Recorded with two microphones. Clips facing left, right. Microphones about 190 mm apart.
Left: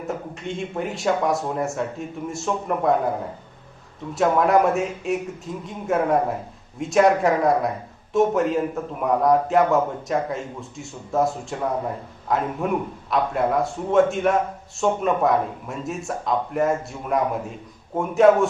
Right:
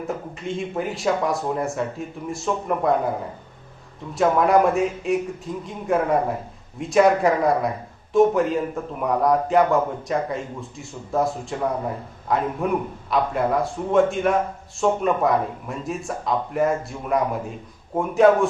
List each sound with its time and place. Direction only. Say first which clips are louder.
0.1 s a man's voice: left 1 dB; centre (ahead or behind)
4.1 s a man's voice: right 1 dB; centre (ahead or behind)